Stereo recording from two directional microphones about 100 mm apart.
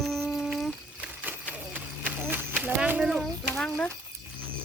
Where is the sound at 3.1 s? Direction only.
5° left (ahead or behind).